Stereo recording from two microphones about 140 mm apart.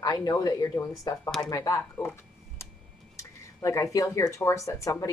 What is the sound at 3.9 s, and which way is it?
Speech, 20° left (ahead or behind).